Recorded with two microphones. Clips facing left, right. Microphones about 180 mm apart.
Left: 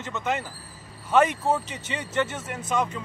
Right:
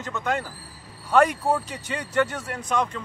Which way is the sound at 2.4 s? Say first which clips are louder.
Right 1 dB; 5° left (ahead or behind).